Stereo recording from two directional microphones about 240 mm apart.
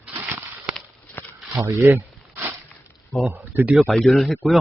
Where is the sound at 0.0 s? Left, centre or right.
Centre.